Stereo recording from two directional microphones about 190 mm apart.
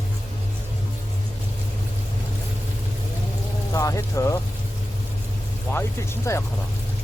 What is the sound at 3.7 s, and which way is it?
Speech, 15° left (ahead or behind).